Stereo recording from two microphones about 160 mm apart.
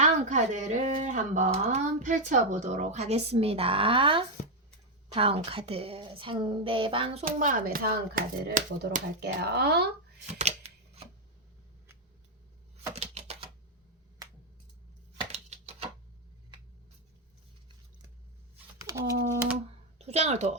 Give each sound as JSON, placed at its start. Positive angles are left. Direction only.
{"t": 0.0, "sound": "speech", "side_deg": -50}
{"t": 7.3, "sound": "speech", "side_deg": -60}
{"t": 10.2, "sound": "shuffling cards", "side_deg": -45}
{"t": 12.9, "sound": "typewriter", "side_deg": -40}
{"t": 15.3, "sound": "chopping", "side_deg": -45}
{"t": 18.5, "sound": "computer keyboard", "side_deg": -20}
{"t": 20.0, "sound": "speech", "side_deg": -40}